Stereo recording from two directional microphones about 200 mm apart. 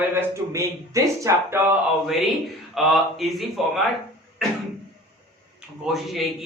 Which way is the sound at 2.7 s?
Centre (ahead or behind).